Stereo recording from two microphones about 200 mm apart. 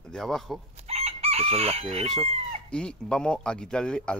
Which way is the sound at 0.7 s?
30° right (ahead or behind).